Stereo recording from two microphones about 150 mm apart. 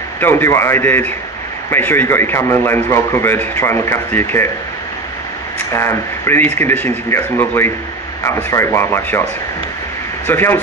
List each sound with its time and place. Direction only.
0.2 s a man's voice: 15° left (ahead or behind)
5.7 s a man's voice: 20° left (ahead or behind)
10.2 s a man's voice: 15° left (ahead or behind)